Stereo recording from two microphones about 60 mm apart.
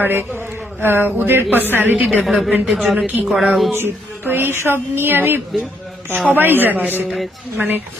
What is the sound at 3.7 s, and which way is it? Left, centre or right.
Speech, right.